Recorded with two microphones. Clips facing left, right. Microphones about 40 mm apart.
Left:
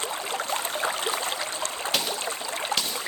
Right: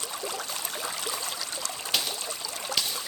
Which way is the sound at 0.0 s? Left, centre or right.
Left.